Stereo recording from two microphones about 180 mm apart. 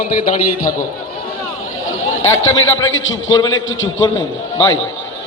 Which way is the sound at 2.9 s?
90° left.